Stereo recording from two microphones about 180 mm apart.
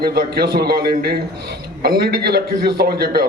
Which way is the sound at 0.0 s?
60° right (ahead or behind).